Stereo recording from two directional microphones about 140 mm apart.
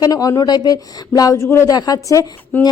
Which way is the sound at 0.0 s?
25° left (ahead or behind).